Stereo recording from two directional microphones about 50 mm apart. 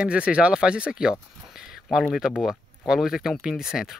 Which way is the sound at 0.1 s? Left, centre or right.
Right.